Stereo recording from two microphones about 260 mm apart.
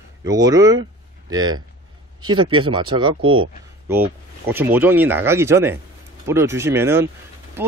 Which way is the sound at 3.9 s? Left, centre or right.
Centre.